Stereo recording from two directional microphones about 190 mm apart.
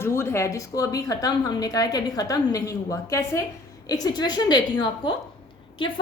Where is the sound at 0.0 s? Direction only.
15° left (ahead or behind).